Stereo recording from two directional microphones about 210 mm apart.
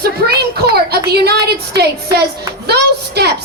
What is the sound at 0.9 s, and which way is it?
Speech, 50° right (ahead or behind).